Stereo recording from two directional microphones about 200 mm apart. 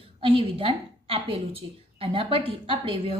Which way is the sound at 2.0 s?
25° right (ahead or behind).